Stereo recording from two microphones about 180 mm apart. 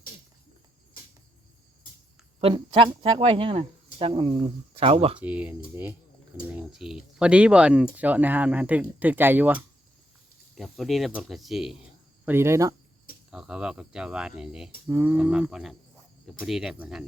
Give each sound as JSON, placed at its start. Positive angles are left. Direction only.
{"t": 2.4, "sound": "speech", "side_deg": -30}
{"t": 5.2, "sound": "speech", "side_deg": -10}
{"t": 12.2, "sound": "speech", "side_deg": -15}
{"t": 13.3, "sound": "speech", "side_deg": -5}